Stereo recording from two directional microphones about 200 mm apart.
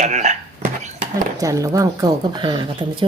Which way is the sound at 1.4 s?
15° right (ahead or behind).